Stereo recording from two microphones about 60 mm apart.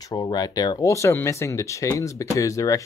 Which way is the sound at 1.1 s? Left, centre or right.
Left.